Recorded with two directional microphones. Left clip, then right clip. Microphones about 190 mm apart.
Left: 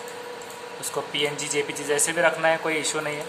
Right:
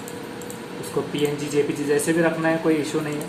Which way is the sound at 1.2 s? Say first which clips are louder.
Right 3 dB; 30° left (ahead or behind).